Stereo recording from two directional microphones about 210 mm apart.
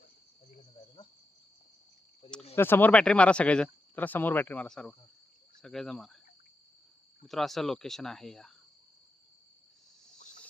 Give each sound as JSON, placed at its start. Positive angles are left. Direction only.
{"t": 2.2, "sound": "speech", "side_deg": 25}
{"t": 2.6, "sound": "speech", "side_deg": 10}
{"t": 7.3, "sound": "speech", "side_deg": 0}